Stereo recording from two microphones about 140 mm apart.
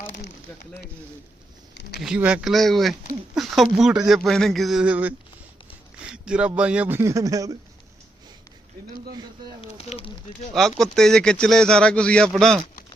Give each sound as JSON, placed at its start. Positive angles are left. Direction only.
{"t": 2.0, "sound": "a man's voice", "side_deg": -5}
{"t": 9.6, "sound": "speech", "side_deg": 45}
{"t": 10.5, "sound": "speech", "side_deg": 0}